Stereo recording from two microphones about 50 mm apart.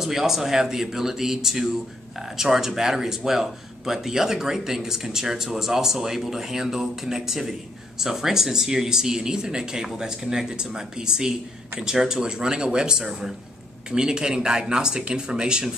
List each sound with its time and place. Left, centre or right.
0.0 s speech: centre